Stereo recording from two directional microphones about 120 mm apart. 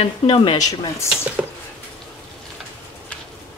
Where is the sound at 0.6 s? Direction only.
30° left (ahead or behind).